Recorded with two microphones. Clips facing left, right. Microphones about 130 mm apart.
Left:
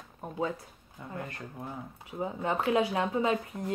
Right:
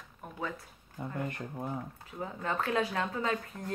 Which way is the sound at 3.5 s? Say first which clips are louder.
Left 5 dB; 10° left (ahead or behind).